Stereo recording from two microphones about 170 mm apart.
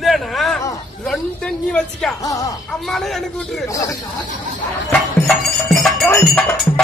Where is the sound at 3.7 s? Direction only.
20° left (ahead or behind).